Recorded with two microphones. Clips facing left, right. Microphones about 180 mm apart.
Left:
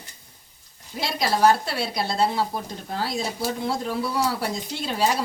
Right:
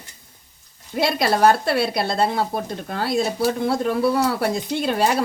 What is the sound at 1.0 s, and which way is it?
Speech, 60° right (ahead or behind).